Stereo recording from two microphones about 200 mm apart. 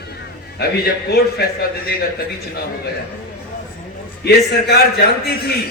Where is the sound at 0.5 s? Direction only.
50° left (ahead or behind).